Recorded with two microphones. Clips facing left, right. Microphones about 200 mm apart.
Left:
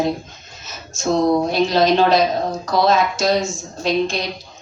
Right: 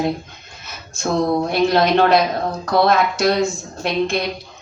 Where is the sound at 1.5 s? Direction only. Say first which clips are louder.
Even; 55° right (ahead or behind).